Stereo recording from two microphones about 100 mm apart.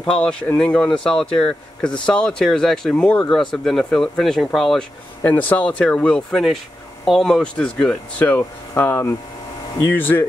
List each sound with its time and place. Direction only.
0.0 s speech: 10° left (ahead or behind)
5.2 s speech: 15° left (ahead or behind)
8.3 s speech: 20° left (ahead or behind)